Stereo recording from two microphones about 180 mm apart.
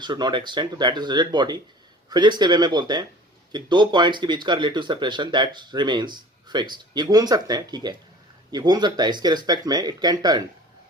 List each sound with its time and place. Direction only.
0.0 s speech: 25° right (ahead or behind)